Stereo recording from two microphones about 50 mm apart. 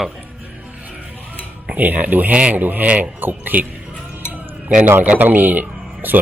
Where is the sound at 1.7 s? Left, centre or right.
Right.